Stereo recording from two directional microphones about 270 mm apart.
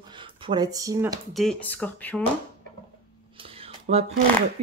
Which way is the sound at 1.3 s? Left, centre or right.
Centre.